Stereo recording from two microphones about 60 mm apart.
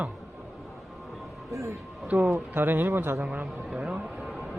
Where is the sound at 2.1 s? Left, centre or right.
Right.